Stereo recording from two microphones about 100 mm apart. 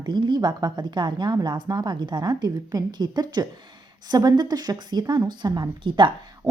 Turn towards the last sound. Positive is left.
turn(degrees=-55)  # may be behind; listen again after turning